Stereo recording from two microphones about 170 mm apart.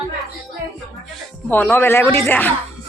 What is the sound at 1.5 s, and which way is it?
Speech, 10° left (ahead or behind).